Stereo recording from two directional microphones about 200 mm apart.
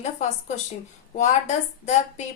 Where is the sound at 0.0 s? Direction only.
35° left (ahead or behind).